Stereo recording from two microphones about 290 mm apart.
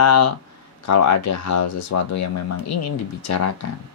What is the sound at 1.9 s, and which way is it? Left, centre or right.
Speech, left.